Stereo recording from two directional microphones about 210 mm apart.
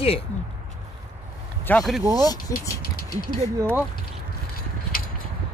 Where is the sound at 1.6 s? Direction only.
5° left (ahead or behind).